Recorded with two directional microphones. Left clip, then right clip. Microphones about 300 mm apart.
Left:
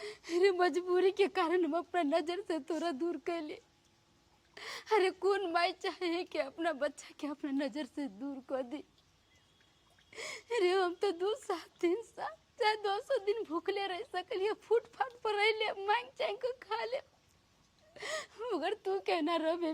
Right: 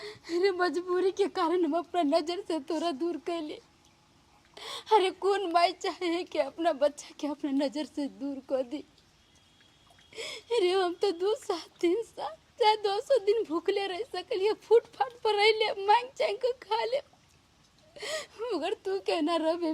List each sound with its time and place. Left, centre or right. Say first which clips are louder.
0.0 s a woman's voice: right 2 dB; left
10.1 s a woman's voice: right 6 dB; left
17.9 s a woman's voice: right 4 dB; left